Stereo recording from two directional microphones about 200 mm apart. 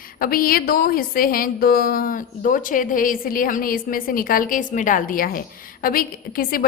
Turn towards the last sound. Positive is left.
turn(degrees=45)  # may be behind; listen again after turning